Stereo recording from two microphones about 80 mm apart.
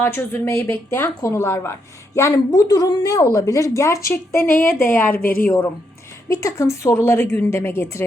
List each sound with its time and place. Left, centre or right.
0.0 s speech: left
6.2 s speech: left